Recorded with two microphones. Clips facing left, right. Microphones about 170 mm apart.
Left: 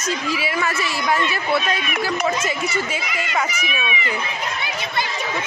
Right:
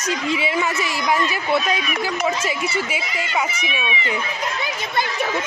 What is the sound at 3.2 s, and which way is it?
Speech, 15° right (ahead or behind).